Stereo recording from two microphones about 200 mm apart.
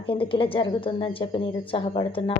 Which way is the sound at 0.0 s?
25° left (ahead or behind).